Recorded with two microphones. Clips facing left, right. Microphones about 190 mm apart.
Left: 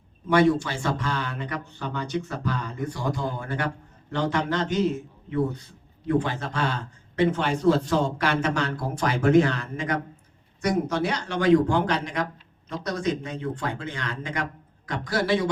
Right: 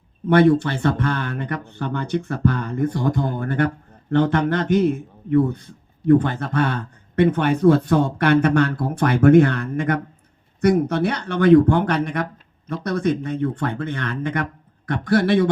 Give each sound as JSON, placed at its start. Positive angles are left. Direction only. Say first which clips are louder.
{"t": 0.3, "sound": "speech", "louder": "right 5 dB", "side_deg": -60}